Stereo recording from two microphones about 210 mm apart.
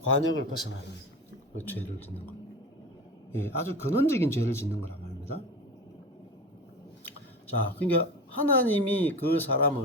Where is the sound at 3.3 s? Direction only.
10° left (ahead or behind).